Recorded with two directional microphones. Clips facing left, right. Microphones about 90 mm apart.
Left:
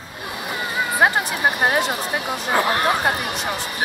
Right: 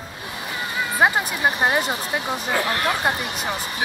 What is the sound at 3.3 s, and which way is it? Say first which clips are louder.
Speech: left 1 dB; centre (ahead or behind).